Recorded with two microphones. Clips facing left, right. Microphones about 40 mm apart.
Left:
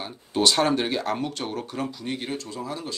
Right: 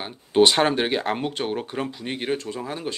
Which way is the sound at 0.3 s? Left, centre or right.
Right.